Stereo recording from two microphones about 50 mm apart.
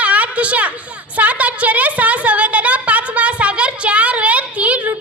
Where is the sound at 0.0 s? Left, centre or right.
Right.